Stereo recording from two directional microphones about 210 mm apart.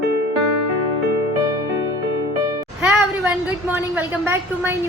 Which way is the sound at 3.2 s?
5° right (ahead or behind).